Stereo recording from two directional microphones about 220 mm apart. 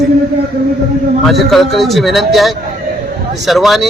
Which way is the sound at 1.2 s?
Centre (ahead or behind).